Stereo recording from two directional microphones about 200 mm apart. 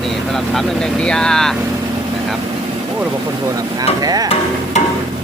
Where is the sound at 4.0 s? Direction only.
20° right (ahead or behind).